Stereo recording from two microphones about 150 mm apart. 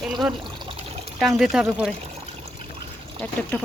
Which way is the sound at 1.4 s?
5° right (ahead or behind).